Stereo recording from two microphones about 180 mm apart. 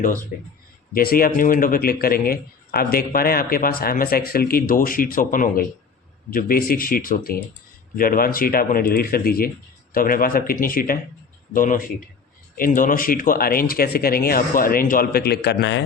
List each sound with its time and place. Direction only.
0.9 s speech: 55° left (ahead or behind); by 15.8 s 70° left (ahead or behind)